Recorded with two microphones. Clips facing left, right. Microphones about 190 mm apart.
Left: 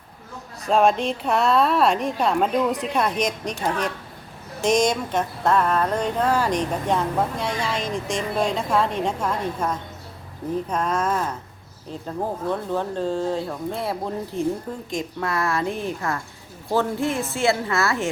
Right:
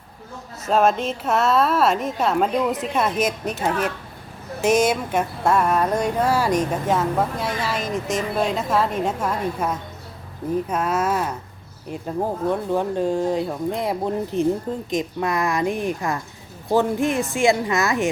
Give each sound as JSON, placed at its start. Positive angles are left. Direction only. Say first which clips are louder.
{"t": 0.6, "sound": "a woman's voice", "louder": "even", "side_deg": 0}